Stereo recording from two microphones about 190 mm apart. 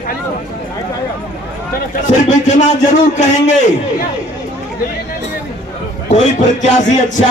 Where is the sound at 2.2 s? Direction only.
40° left (ahead or behind).